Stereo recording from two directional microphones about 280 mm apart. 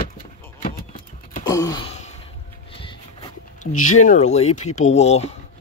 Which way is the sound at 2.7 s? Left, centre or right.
Centre.